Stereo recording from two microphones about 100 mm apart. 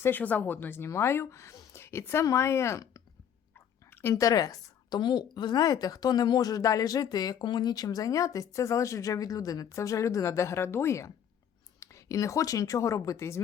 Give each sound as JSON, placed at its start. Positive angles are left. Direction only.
{"t": 0.0, "sound": "a woman's voice", "side_deg": 20}
{"t": 4.0, "sound": "a woman's voice", "side_deg": 30}